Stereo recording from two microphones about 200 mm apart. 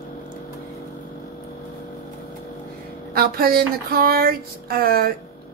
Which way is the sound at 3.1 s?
50° right (ahead or behind).